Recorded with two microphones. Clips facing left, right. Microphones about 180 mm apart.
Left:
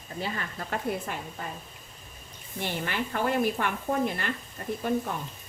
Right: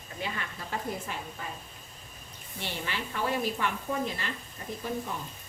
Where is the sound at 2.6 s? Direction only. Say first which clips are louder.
Left 5 dB; 55° left (ahead or behind).